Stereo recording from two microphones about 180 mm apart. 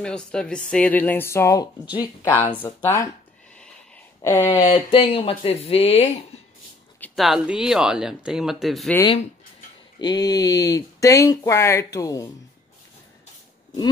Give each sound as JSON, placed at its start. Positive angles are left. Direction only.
{"t": 0.0, "sound": "speech", "side_deg": 5}
{"t": 4.2, "sound": "speech", "side_deg": 15}
{"t": 4.6, "sound": "speech", "side_deg": 30}
{"t": 7.0, "sound": "speech", "side_deg": 0}
{"t": 9.9, "sound": "speech", "side_deg": 25}